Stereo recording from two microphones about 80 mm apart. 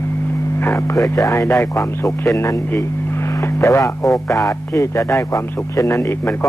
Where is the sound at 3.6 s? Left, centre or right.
Left.